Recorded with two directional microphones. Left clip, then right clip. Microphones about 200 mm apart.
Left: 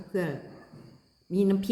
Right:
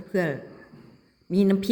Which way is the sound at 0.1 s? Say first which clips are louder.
Right 5 dB; 35° right (ahead or behind).